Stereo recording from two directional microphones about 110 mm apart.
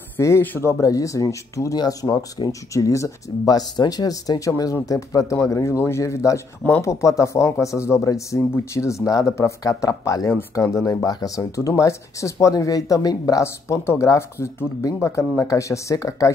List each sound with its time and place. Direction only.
0.2 s speech: 20° left (ahead or behind)